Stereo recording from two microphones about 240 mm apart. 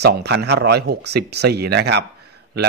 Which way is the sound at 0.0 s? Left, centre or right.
Right.